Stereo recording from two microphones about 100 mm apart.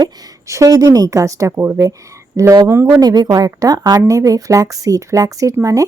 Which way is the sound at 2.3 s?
35° right (ahead or behind).